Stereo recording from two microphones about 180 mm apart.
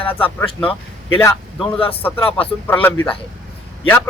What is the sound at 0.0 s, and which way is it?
Speech, 10° left (ahead or behind).